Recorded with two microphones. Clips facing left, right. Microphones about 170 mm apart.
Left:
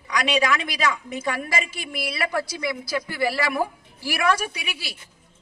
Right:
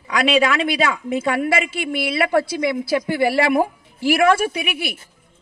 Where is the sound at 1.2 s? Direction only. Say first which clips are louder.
Right 8 dB; 60° right (ahead or behind).